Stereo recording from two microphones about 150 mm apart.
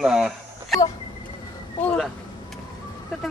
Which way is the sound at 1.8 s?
10° left (ahead or behind).